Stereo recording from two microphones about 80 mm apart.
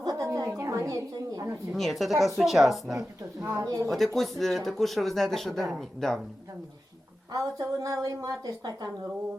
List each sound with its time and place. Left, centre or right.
0.0 s a sound: right
1.7 s speech: centre
3.6 s speech: right
3.8 s speech: centre
7.3 s a woman's voice: right